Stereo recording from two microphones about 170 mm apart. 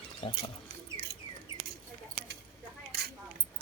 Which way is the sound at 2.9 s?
70° right (ahead or behind).